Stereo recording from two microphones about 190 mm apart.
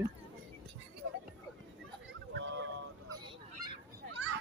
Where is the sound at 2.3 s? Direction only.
75° right (ahead or behind).